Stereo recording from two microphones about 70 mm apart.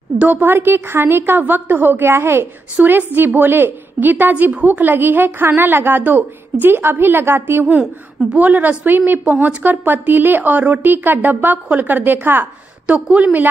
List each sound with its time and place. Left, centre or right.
0.2 s a woman's voice: right
8.4 s a woman's voice: right